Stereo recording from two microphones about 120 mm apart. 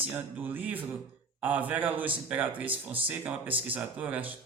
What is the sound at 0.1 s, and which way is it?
A man's voice, 15° right (ahead or behind).